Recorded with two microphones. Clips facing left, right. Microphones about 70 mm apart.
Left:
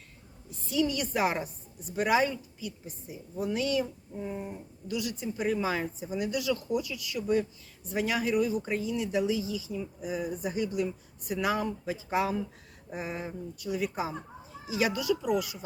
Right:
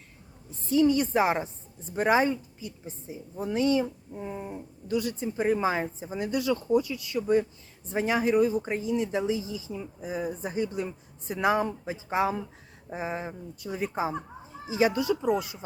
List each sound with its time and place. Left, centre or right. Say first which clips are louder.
0.5 s speech: right 7 dB; right
4.2 s a sound: even; right
4.9 s speech: right 4 dB; right